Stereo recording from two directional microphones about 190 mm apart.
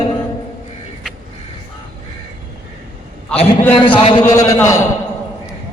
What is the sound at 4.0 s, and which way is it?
Speech, 30° left (ahead or behind).